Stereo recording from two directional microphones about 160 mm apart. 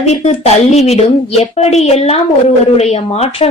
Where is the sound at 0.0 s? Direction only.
45° left (ahead or behind).